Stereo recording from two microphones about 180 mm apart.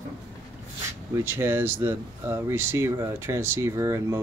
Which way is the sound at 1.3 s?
10° right (ahead or behind).